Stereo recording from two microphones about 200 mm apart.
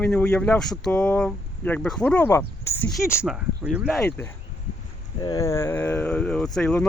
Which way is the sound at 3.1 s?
Centre (ahead or behind).